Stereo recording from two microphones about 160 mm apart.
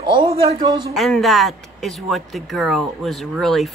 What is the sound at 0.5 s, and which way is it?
Speech, 30° right (ahead or behind).